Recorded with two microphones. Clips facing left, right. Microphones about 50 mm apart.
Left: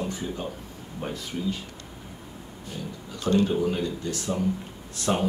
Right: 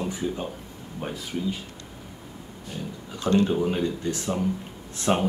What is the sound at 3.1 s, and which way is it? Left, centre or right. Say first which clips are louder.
Speech: right 1 dB; right.